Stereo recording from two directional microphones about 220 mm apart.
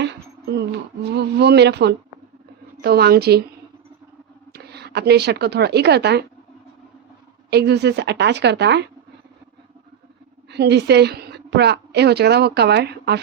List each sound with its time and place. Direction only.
0.0 s a sound: 50° right (ahead or behind)
2.8 s a woman's voice: 45° right (ahead or behind)
4.5 s a woman's voice: 45° right (ahead or behind)
7.5 s a woman's voice: 50° right (ahead or behind)
10.5 s a woman's voice: 50° right (ahead or behind)